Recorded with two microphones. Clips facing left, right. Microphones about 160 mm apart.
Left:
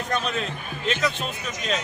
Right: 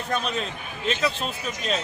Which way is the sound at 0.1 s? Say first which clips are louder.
Even; centre (ahead or behind).